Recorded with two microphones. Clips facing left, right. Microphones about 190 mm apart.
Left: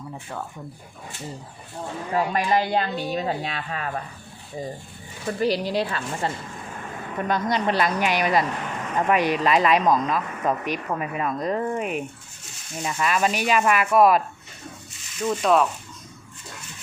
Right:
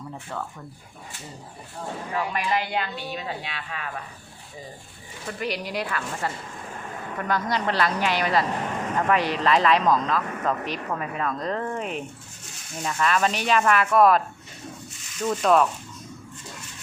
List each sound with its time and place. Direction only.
2.1 s speech: 40° left (ahead or behind)
5.3 s a woman's voice: 35° left (ahead or behind); by 14.2 s 10° left (ahead or behind)
15.2 s speech: centre (ahead or behind)